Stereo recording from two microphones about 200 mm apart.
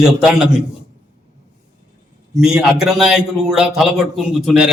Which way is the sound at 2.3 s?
5° right (ahead or behind).